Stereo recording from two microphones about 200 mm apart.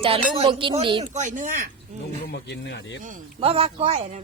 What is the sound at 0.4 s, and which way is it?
A woman's voice, 25° right (ahead or behind).